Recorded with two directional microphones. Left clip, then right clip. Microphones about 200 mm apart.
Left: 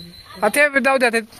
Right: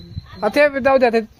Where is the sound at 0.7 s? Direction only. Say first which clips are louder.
Right 2 dB; 15° left (ahead or behind).